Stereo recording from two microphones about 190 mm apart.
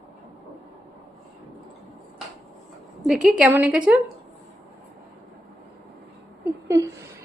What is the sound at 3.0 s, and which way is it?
Speech, centre (ahead or behind).